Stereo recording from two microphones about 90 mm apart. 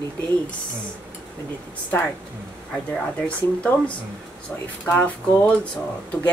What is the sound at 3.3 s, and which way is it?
A woman's voice, 15° left (ahead or behind).